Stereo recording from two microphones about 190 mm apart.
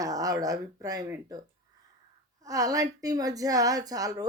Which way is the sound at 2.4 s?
20° right (ahead or behind).